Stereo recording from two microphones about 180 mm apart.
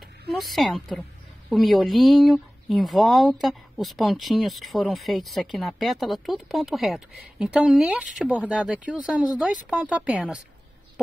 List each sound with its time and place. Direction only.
0.3 s speech: centre (ahead or behind)